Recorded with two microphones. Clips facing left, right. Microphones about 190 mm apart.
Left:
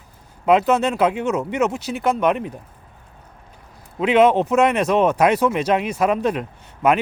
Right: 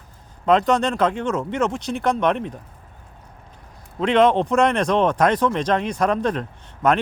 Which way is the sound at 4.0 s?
5° left (ahead or behind).